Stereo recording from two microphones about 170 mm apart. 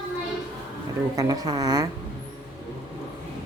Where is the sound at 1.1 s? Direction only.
20° right (ahead or behind).